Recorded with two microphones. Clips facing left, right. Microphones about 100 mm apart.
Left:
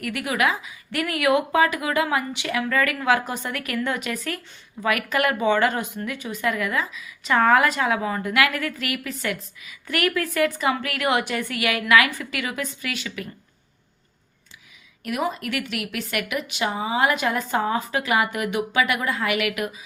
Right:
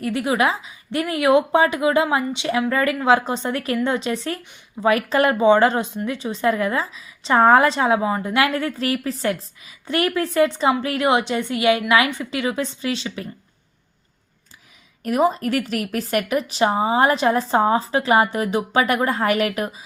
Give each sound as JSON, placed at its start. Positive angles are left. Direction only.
{"t": 0.0, "sound": "a woman's voice", "side_deg": -25}
{"t": 15.0, "sound": "a woman's voice", "side_deg": -35}